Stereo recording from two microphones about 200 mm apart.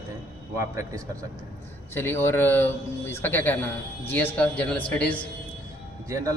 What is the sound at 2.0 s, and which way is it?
Speech, 10° left (ahead or behind).